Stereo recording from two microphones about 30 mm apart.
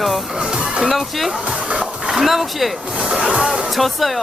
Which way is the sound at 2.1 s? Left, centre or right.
Centre.